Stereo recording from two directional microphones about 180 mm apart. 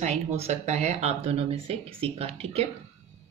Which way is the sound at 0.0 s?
40° right (ahead or behind).